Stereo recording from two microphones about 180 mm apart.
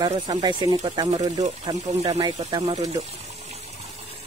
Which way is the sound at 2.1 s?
35° right (ahead or behind).